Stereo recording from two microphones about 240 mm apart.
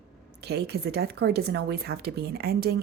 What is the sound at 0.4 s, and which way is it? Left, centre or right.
Speech, right.